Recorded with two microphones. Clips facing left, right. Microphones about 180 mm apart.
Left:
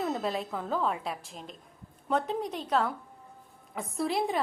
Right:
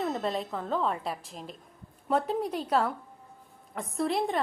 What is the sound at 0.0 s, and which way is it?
A woman's voice, centre (ahead or behind).